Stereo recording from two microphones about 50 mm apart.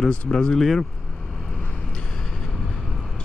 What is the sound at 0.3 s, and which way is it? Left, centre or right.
Speech, centre.